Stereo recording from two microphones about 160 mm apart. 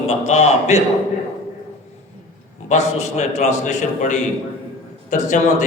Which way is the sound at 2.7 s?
45° left (ahead or behind).